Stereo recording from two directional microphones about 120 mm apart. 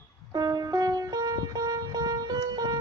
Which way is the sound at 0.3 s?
35° right (ahead or behind).